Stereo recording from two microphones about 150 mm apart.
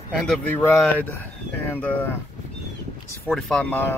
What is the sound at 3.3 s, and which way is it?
Speech, 5° left (ahead or behind).